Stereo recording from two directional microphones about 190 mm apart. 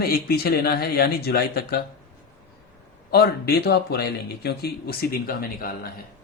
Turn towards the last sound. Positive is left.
turn(degrees=50)  # may be behind; listen again after turning